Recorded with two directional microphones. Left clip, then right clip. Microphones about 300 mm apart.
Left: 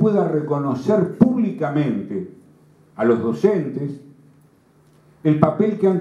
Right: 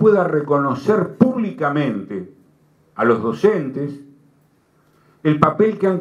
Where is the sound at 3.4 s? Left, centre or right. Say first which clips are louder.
Right 2 dB; centre.